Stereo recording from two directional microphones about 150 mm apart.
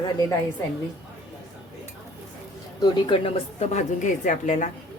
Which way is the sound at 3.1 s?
35° left (ahead or behind).